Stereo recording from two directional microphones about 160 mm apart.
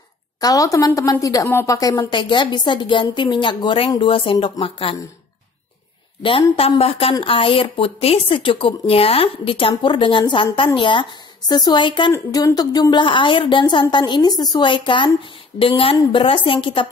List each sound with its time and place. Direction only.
0.4 s a woman's voice: 20° left (ahead or behind)
6.5 s a woman's voice: 35° left (ahead or behind)